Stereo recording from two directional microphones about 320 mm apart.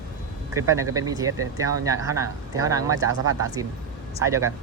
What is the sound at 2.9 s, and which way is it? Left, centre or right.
Speech, left.